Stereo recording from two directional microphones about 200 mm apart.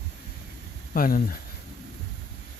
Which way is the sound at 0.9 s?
45° left (ahead or behind).